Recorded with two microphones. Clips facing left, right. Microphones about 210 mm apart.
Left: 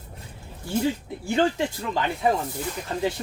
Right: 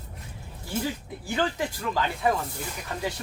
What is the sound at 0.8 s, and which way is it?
Speech, 25° left (ahead or behind).